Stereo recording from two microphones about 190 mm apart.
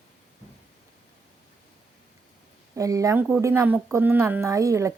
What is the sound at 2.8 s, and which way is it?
Speech, 15° right (ahead or behind).